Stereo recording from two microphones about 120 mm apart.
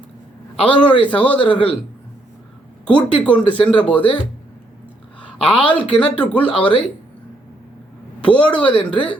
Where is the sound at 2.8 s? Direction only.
10° left (ahead or behind).